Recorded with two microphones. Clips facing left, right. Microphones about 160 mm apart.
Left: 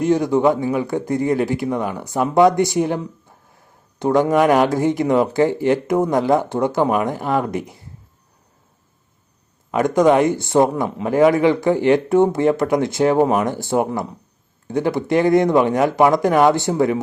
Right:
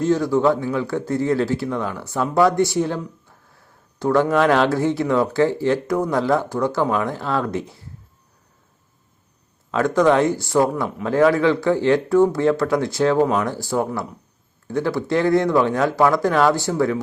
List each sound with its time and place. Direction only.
0.0 s speech: 20° left (ahead or behind)
9.7 s a man's voice: 15° left (ahead or behind)